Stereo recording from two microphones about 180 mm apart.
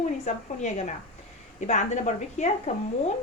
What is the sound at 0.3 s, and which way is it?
Speech, 40° left (ahead or behind).